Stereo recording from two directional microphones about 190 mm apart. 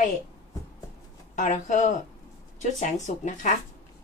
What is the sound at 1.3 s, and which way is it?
Speech, 40° left (ahead or behind).